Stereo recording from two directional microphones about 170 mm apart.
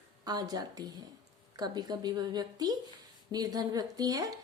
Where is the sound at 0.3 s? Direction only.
25° right (ahead or behind).